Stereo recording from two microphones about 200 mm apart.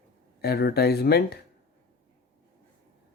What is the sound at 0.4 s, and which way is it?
Speech, 50° left (ahead or behind).